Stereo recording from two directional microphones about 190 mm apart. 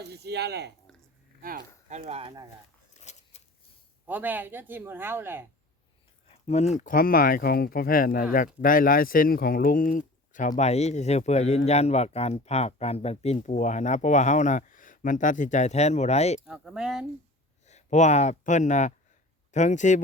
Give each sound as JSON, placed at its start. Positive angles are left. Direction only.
{"t": 0.0, "sound": "speech", "side_deg": -60}
{"t": 0.9, "sound": "a sound", "side_deg": 5}
{"t": 1.4, "sound": "speech", "side_deg": -45}
{"t": 1.9, "sound": "speech", "side_deg": -35}
{"t": 3.0, "sound": "a sound", "side_deg": 35}
{"t": 4.0, "sound": "speech", "side_deg": -10}
{"t": 6.2, "sound": "a sound", "side_deg": 30}
{"t": 6.7, "sound": "speech", "side_deg": 45}
{"t": 10.6, "sound": "speech", "side_deg": 35}
{"t": 16.5, "sound": "speech", "side_deg": -5}
{"t": 17.7, "sound": "speech", "side_deg": 35}